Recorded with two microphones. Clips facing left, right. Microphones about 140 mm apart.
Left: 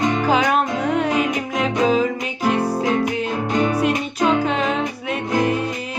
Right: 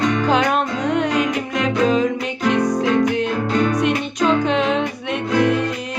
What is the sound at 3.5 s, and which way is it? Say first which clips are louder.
Music: even; 20° left (ahead or behind).